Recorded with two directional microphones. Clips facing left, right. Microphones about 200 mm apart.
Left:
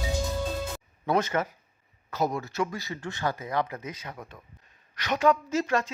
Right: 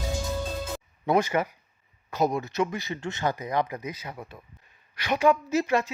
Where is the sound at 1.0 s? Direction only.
10° right (ahead or behind).